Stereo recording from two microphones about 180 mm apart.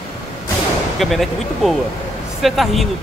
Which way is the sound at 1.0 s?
Centre (ahead or behind).